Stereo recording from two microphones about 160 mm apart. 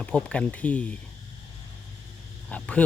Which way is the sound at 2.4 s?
10° left (ahead or behind).